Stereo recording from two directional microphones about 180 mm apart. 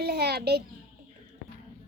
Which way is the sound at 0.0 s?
65° right (ahead or behind).